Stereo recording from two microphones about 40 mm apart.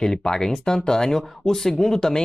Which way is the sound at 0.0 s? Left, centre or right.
Centre.